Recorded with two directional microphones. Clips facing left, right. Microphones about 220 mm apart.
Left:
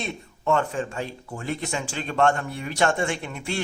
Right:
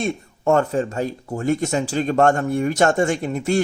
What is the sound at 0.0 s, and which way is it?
Speech, 45° right (ahead or behind).